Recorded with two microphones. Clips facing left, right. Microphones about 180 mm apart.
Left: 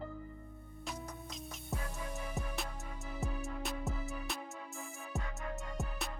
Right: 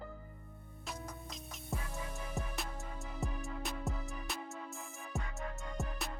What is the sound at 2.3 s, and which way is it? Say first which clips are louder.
Music: even; centre (ahead or behind).